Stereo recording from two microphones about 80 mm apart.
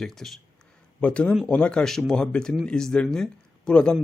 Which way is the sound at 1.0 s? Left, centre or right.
Centre.